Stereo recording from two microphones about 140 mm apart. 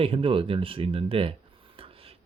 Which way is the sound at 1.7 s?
40° right (ahead or behind).